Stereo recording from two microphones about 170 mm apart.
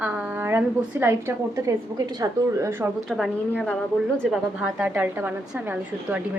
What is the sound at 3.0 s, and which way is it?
A woman's voice, centre (ahead or behind).